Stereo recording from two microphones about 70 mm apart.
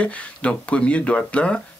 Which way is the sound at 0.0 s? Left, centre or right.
Centre.